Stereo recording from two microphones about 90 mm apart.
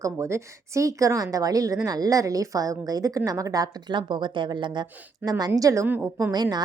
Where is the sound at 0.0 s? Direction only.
30° right (ahead or behind).